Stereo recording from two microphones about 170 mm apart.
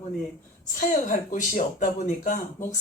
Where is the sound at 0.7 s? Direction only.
50° left (ahead or behind).